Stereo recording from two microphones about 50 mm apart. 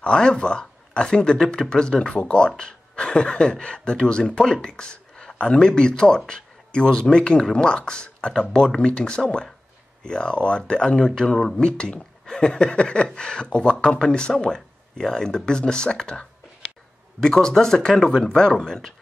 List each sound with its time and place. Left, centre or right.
0.0 s speech: centre